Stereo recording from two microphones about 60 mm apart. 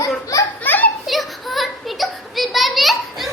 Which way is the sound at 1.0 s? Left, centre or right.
Centre.